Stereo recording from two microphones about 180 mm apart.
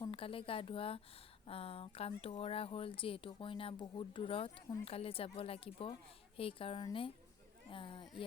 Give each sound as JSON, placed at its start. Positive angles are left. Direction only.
{"t": 0.0, "sound": "a woman's voice", "side_deg": 30}